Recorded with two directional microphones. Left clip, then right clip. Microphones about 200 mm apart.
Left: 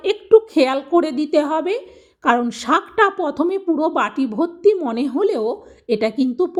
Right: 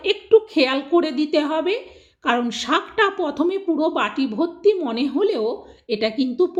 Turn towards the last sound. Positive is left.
turn(degrees=30)  # may be behind; listen again after turning